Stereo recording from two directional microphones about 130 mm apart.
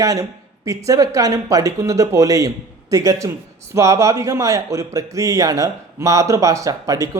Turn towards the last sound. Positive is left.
turn(degrees=-25)  # may be behind; listen again after turning